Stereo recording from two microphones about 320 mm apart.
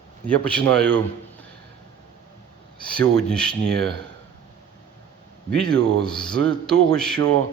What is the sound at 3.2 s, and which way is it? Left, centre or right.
Speech, centre.